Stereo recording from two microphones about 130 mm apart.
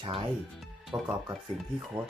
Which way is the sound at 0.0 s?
40° right (ahead or behind).